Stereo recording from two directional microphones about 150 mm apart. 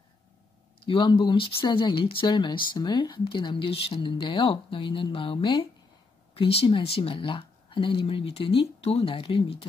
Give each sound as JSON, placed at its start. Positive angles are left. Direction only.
{"t": 0.8, "sound": "speech", "side_deg": 35}